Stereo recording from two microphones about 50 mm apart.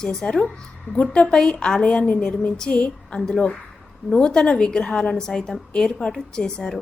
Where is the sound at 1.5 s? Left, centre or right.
Centre.